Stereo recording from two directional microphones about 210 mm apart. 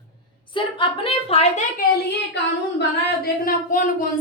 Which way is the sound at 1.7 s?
55° left (ahead or behind).